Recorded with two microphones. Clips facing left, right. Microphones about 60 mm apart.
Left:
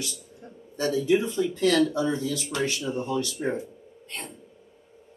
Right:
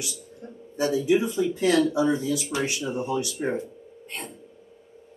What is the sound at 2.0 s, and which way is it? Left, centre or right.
Speech, right.